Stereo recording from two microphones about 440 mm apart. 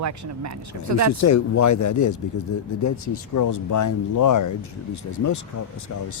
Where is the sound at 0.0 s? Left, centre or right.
Right.